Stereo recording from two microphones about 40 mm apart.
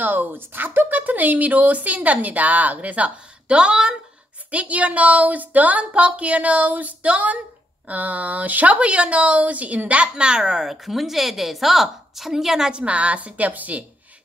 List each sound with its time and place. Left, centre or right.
0.0 s speech: right
3.4 s speech: right
4.5 s a woman's voice: right
10.0 s a woman's voice: right
12.7 s a woman's voice: right